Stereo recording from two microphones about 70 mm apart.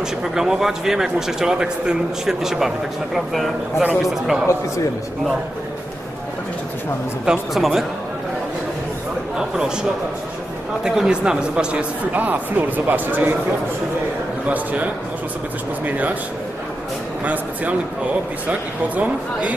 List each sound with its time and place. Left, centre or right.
0.2 s a man's voice: centre
7.2 s speech: centre
10.8 s speech: centre; by 13.4 s right
14.5 s speech: right
17.2 s speech: right